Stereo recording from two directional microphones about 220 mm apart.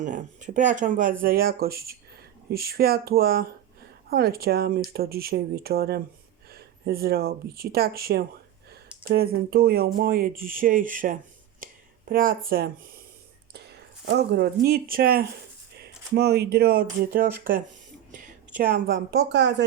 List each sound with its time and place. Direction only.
0.0 s speech: 35° right (ahead or behind)
11.6 s a sound: 40° right (ahead or behind)
13.5 s speech: 50° right (ahead or behind)